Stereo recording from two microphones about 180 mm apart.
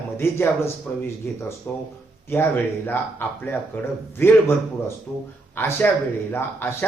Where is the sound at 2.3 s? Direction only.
10° left (ahead or behind).